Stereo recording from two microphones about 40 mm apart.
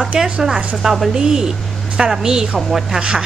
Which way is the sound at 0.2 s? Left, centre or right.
Centre.